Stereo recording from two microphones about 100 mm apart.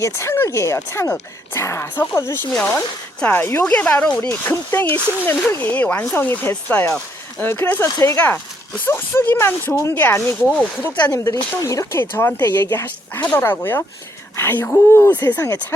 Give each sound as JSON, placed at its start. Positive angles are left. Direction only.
{"t": 0.0, "sound": "speech", "side_deg": 30}
{"t": 4.3, "sound": "speech", "side_deg": 20}
{"t": 10.9, "sound": "speech", "side_deg": 45}
{"t": 11.2, "sound": "speech", "side_deg": 30}